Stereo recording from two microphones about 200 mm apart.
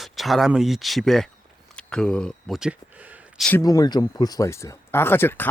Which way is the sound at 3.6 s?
20° left (ahead or behind).